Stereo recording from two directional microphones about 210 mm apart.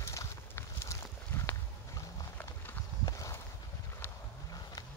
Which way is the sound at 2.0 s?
10° left (ahead or behind).